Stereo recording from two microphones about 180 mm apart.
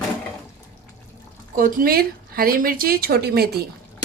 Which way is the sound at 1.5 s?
50° right (ahead or behind).